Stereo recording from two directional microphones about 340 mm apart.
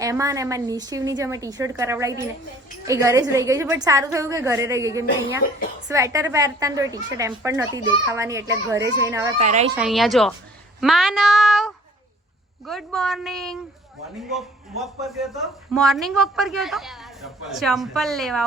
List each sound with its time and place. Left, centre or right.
0.0 s a woman's voice: centre
5.4 s a woman's voice: left
5.9 s a woman's voice: centre
9.4 s a child's voice: centre
9.7 s a man's voice: centre